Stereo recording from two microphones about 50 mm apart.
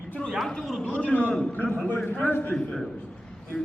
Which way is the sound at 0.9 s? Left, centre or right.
Left.